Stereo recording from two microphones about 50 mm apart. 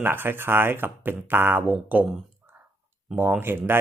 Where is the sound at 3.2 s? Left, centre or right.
Right.